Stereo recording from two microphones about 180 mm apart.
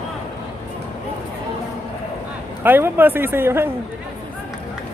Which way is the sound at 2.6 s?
10° right (ahead or behind).